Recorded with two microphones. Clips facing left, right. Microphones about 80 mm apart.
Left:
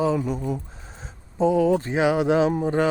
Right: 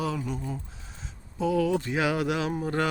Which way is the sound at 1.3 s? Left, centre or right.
Left.